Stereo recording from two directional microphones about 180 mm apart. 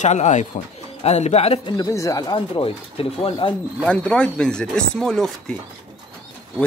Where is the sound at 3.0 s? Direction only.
30° left (ahead or behind).